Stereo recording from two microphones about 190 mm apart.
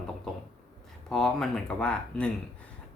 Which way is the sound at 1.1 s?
Centre (ahead or behind).